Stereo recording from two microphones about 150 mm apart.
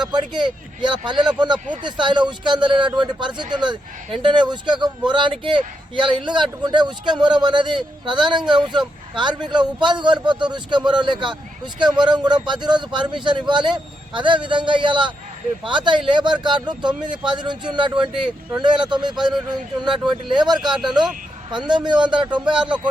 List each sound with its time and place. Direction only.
0.1 s a man's voice: 30° right (ahead or behind)
20.3 s speech: 30° right (ahead or behind)
20.6 s speech: 5° right (ahead or behind)
21.5 s a man's voice: 30° right (ahead or behind)